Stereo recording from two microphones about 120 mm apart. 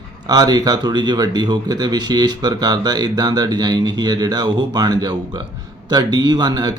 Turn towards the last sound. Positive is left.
turn(degrees=-35)  # may be behind; listen again after turning